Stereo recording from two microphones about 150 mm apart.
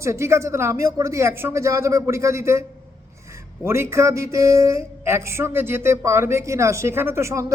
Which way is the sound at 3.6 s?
15° right (ahead or behind).